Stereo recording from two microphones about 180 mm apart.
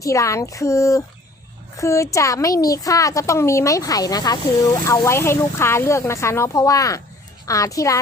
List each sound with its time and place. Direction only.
0.0 s speech: 20° left (ahead or behind)